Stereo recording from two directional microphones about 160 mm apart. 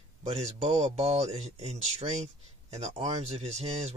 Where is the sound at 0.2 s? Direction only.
40° right (ahead or behind).